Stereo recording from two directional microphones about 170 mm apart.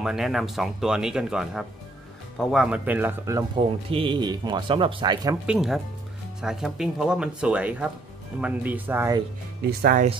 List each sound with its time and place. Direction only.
0.0 s speech: centre (ahead or behind)
3.9 s speech: 30° right (ahead or behind)
5.5 s speech: centre (ahead or behind)
9.8 s speech: 55° right (ahead or behind)